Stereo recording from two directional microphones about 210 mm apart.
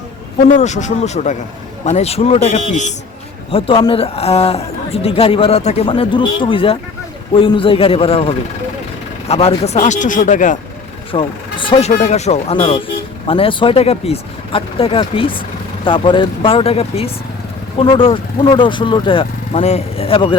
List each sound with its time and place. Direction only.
0.4 s speech: 35° left (ahead or behind)
11.1 s speech: 25° left (ahead or behind)